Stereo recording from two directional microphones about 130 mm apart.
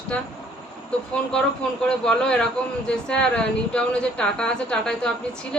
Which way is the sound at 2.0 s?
5° left (ahead or behind).